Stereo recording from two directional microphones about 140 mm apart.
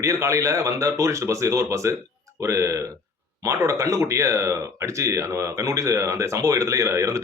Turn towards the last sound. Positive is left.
turn(degrees=-20)  # may be behind; listen again after turning